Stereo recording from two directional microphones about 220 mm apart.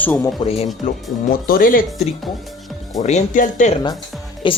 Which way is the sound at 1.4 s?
40° left (ahead or behind).